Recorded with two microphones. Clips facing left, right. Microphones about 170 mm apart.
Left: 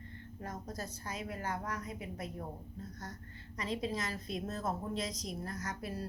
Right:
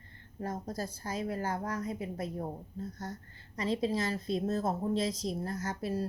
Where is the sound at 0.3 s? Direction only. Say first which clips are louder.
Right 6 dB; 30° right (ahead or behind).